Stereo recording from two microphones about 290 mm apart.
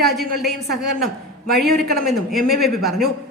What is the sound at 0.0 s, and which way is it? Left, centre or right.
Speech, centre.